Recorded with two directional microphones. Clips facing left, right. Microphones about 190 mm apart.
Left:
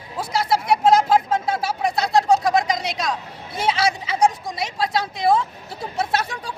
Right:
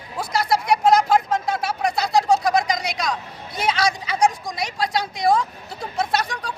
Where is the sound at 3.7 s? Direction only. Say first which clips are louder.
Even; 5° left (ahead or behind).